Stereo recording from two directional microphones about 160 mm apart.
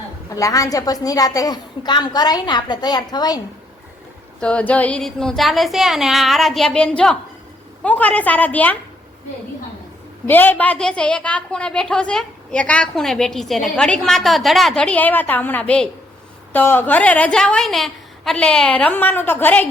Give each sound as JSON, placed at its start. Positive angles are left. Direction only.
{"t": 0.3, "sound": "a woman's voice", "side_deg": 20}
{"t": 4.4, "sound": "a woman's voice", "side_deg": 5}
{"t": 10.2, "sound": "a woman's voice", "side_deg": 10}